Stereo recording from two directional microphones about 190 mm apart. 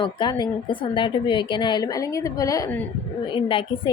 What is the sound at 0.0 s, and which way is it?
Speech, 25° left (ahead or behind).